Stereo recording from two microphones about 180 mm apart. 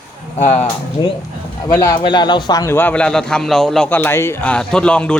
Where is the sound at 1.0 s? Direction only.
25° left (ahead or behind).